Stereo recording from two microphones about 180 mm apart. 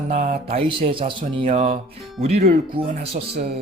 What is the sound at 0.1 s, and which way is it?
Speech, 50° right (ahead or behind).